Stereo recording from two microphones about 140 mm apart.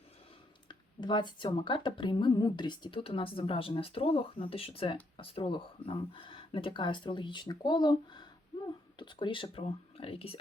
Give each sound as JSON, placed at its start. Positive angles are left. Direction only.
{"t": 0.7, "sound": "speech", "side_deg": 35}